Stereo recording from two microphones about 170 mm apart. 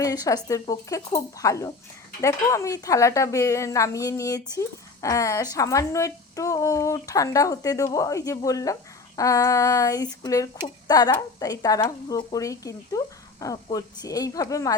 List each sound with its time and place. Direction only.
0.0 s speech: 20° left (ahead or behind)